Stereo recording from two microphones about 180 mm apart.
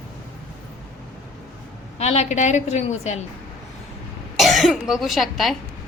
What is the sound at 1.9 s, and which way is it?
A woman's voice, 35° left (ahead or behind).